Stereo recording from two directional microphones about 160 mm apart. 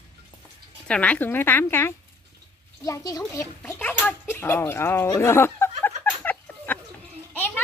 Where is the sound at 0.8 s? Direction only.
10° left (ahead or behind).